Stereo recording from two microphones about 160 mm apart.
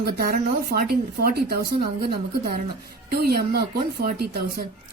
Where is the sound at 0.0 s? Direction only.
70° right (ahead or behind).